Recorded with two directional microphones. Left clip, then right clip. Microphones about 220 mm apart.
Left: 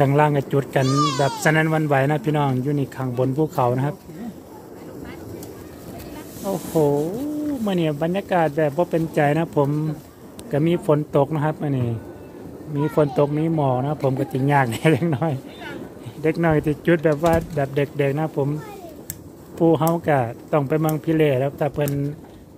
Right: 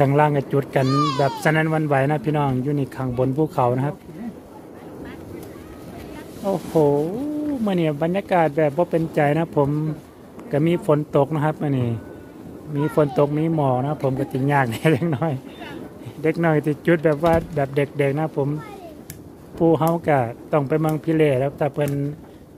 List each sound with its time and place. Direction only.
0.0 s speech: centre (ahead or behind)
0.8 s speech: 25° left (ahead or behind)
1.4 s speech: centre (ahead or behind)
6.4 s speech: 10° right (ahead or behind)
19.6 s speech: centre (ahead or behind)